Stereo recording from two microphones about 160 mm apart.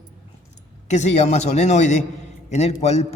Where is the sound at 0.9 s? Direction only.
45° left (ahead or behind).